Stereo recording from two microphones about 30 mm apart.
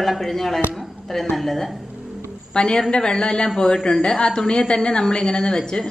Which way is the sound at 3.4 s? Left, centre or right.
Centre.